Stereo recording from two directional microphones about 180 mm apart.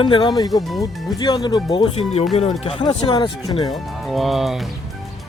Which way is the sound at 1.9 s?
35° left (ahead or behind).